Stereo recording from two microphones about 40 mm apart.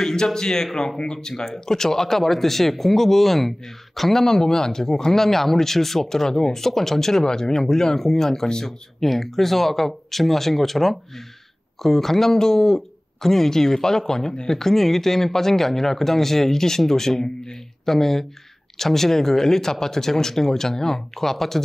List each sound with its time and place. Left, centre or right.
0.0 s speech: centre